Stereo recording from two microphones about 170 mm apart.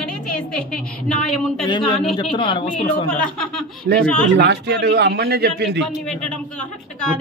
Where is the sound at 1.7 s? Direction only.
25° left (ahead or behind).